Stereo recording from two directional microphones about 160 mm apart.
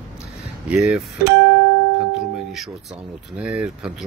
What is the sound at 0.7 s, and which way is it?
Speech, 5° right (ahead or behind).